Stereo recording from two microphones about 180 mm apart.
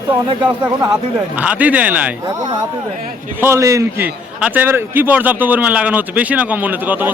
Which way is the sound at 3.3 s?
15° right (ahead or behind).